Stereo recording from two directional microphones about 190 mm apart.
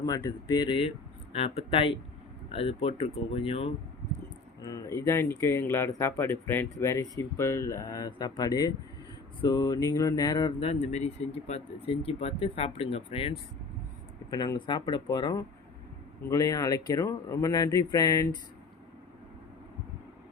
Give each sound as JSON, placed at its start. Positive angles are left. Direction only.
{"t": 0.0, "sound": "speech", "side_deg": 20}
{"t": 4.6, "sound": "speech", "side_deg": 20}